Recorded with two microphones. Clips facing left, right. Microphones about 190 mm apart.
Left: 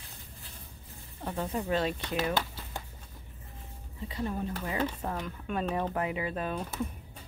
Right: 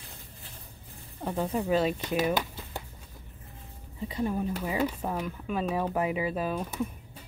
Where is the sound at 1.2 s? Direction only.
10° right (ahead or behind).